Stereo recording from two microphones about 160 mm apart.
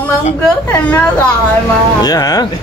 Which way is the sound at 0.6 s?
10° left (ahead or behind).